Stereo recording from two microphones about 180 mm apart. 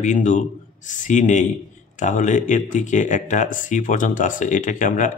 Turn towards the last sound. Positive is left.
turn(degrees=45)  # may be behind; listen again after turning